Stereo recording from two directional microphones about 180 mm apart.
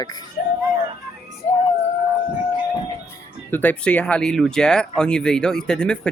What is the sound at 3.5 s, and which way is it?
Speech, 10° left (ahead or behind).